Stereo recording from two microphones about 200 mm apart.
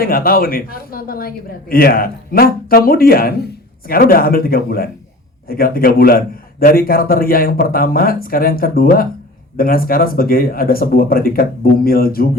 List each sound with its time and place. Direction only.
0.0 s a man's voice: 45° left (ahead or behind)